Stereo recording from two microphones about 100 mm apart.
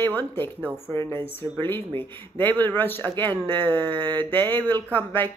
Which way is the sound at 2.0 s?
20° left (ahead or behind).